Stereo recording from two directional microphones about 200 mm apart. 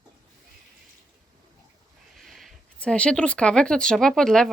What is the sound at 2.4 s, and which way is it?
Speech, 5° left (ahead or behind).